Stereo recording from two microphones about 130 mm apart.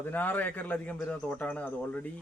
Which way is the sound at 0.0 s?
15° left (ahead or behind).